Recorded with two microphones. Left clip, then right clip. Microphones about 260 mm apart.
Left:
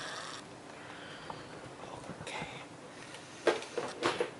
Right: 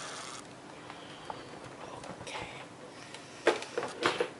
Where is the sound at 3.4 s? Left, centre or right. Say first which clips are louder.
Right 2 dB; centre.